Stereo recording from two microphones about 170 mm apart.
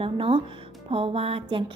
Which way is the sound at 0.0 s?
30° right (ahead or behind).